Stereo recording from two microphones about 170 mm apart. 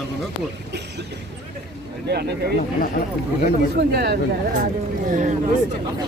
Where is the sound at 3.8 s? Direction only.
70° right (ahead or behind).